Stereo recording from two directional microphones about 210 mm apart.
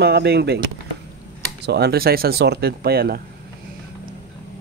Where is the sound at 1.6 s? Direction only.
50° right (ahead or behind).